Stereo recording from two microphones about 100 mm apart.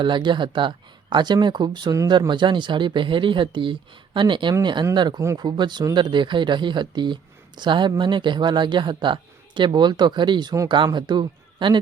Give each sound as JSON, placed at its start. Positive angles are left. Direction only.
{"t": 0.0, "sound": "speech", "side_deg": -50}